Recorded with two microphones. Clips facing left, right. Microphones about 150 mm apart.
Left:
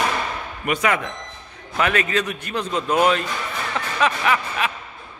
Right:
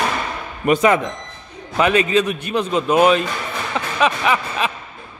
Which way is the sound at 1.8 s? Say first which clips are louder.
Right 5 dB; 20° right (ahead or behind).